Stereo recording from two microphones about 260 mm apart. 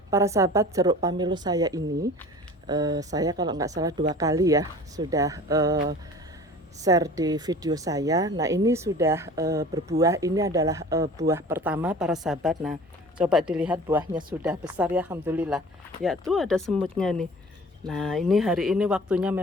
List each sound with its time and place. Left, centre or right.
0.1 s speech: centre
5.7 s speech: right
6.8 s speech: centre